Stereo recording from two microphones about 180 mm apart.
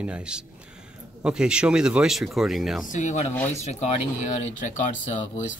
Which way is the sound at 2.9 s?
45° left (ahead or behind).